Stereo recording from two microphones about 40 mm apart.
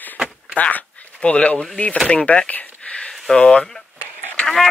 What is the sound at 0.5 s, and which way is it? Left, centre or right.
Speech, left.